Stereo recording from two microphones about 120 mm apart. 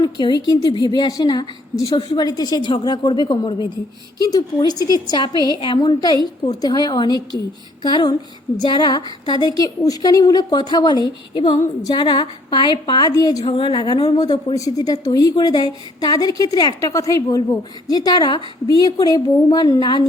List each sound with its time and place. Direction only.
0.0 s speech: 35° left (ahead or behind)
13.4 s speech: 45° left (ahead or behind)